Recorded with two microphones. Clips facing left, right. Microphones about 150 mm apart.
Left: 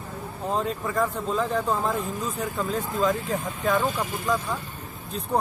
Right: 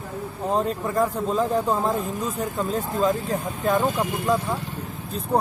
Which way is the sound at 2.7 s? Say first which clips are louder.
Right 2 dB; 35° right (ahead or behind).